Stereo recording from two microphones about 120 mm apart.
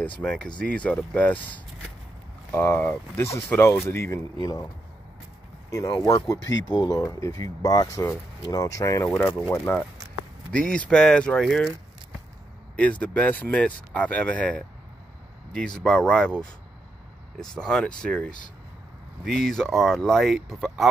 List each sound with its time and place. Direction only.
0.0 s speech: 10° left (ahead or behind); by 4.6 s 30° left (ahead or behind)
5.7 s speech: 25° left (ahead or behind)
10.5 s speech: 10° left (ahead or behind)
12.7 s speech: 10° left (ahead or behind)
15.8 s speech: 10° left (ahead or behind)
17.4 s speech: 5° left (ahead or behind)